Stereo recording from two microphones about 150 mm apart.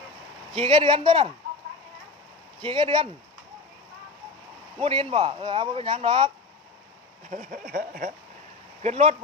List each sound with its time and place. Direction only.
0.5 s speech: 40° right (ahead or behind)
2.6 s speech: 35° right (ahead or behind)
4.8 s speech: 35° right (ahead or behind)
7.3 s speech: 60° right (ahead or behind)
7.7 s speech: 85° right
8.8 s speech: 45° right (ahead or behind)